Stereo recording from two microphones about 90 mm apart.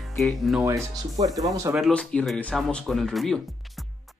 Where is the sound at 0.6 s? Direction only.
35° right (ahead or behind).